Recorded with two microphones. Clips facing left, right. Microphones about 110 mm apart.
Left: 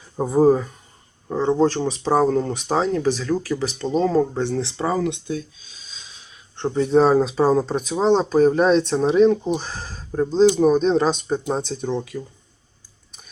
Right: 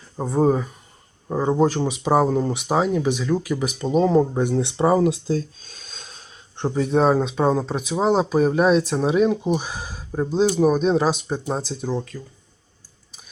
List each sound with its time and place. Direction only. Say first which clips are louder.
0.2 s speech: left 3 dB; 5° left (ahead or behind)
1.3 s speech: left 1 dB; 10° right (ahead or behind)
4.8 s speech: right 6 dB; 25° right (ahead or behind)
5.2 s a sound: right 4 dB; 35° right (ahead or behind)
6.6 s speech: left 2 dB; 5° right (ahead or behind)